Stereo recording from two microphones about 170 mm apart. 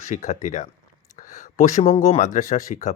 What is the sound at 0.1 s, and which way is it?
Speech, 45° left (ahead or behind).